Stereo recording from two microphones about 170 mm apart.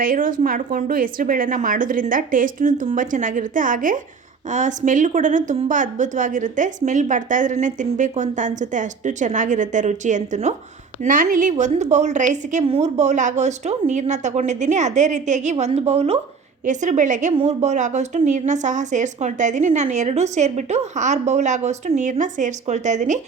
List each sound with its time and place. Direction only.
0.0 s speech: 55° right (ahead or behind)